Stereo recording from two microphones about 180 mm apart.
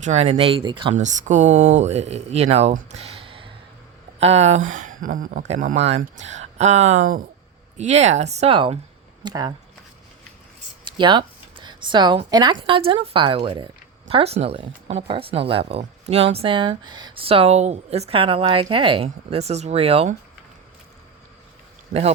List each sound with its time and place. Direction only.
0.0 s speech: 35° right (ahead or behind)
0.9 s speech: 40° right (ahead or behind); by 9.6 s 20° right (ahead or behind)
10.8 s speech: 25° right (ahead or behind)